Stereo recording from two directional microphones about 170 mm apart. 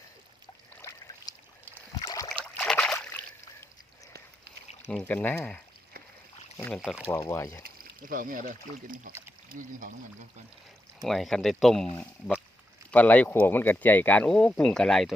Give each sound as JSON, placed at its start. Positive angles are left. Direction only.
{"t": 0.7, "sound": "a sound", "side_deg": 15}
{"t": 2.4, "sound": "a sound", "side_deg": 5}
{"t": 4.9, "sound": "speech", "side_deg": 5}
{"t": 6.7, "sound": "speech", "side_deg": -5}
{"t": 7.2, "sound": "speech", "side_deg": 15}
{"t": 7.6, "sound": "speech", "side_deg": -55}
{"t": 11.0, "sound": "speech", "side_deg": 0}
{"t": 12.9, "sound": "speech", "side_deg": 10}